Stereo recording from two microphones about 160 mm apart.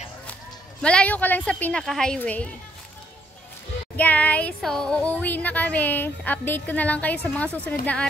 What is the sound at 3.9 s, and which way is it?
A woman's voice, 10° left (ahead or behind).